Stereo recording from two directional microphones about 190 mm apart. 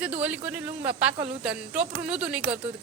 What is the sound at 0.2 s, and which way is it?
A woman's voice, 10° right (ahead or behind).